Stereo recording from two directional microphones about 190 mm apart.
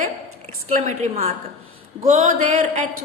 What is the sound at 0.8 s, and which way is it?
A woman's voice, 35° right (ahead or behind).